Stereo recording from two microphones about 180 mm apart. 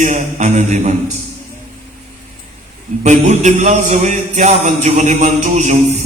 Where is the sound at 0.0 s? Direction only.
40° right (ahead or behind).